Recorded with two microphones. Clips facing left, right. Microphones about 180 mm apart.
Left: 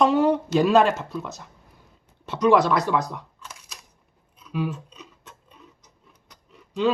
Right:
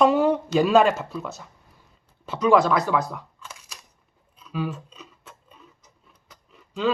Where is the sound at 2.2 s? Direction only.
Centre (ahead or behind).